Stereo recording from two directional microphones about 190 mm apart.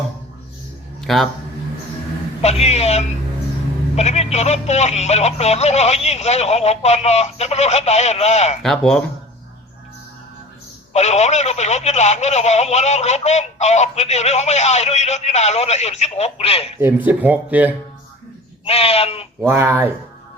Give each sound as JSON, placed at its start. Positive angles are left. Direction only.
{"t": 1.0, "sound": "speech", "side_deg": 0}
{"t": 2.4, "sound": "speech", "side_deg": 35}
{"t": 8.6, "sound": "speech", "side_deg": 5}
{"t": 10.9, "sound": "speech", "side_deg": 35}
{"t": 16.8, "sound": "speech", "side_deg": -10}
{"t": 18.6, "sound": "speech", "side_deg": 30}
{"t": 19.4, "sound": "speech", "side_deg": -10}